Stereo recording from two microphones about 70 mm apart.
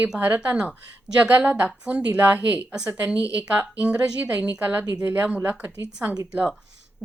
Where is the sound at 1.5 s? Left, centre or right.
Right.